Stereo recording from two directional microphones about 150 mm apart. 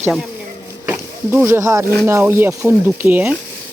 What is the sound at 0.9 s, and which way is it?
Speech, 15° right (ahead or behind).